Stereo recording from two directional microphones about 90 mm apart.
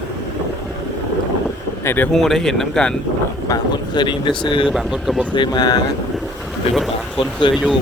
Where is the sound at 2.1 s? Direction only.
5° left (ahead or behind).